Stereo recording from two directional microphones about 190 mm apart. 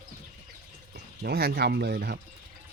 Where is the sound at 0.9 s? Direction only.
55° right (ahead or behind).